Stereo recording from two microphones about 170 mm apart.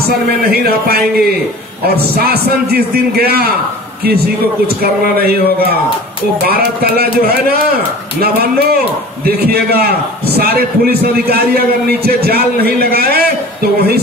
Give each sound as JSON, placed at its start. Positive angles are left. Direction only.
{"t": 0.5, "sound": "a man's voice", "side_deg": -65}
{"t": 5.0, "sound": "a man's voice", "side_deg": -65}
{"t": 6.5, "sound": "a man's voice", "side_deg": -65}
{"t": 9.2, "sound": "a man's voice", "side_deg": -65}